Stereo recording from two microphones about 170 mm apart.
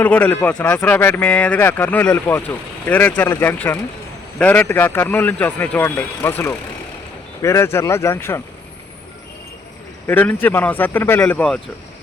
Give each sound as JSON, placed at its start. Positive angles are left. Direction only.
{"t": 0.0, "sound": "speech", "side_deg": 10}
{"t": 10.1, "sound": "speech", "side_deg": 10}